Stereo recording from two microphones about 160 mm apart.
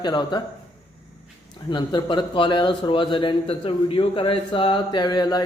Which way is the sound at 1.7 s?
30° left (ahead or behind).